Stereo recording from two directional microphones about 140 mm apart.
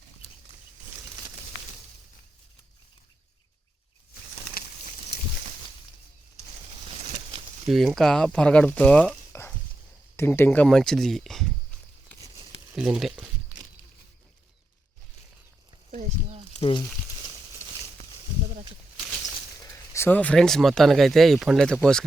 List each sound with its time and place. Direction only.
7.7 s speech: centre (ahead or behind)
9.3 s chop: 20° left (ahead or behind)
10.2 s speech: 15° left (ahead or behind)
12.7 s speech: 5° right (ahead or behind)
15.9 s a sound: 55° right (ahead or behind)
16.6 s speech: 40° left (ahead or behind)
19.2 s speech: 20° left (ahead or behind); by 22.0 s 5° left (ahead or behind)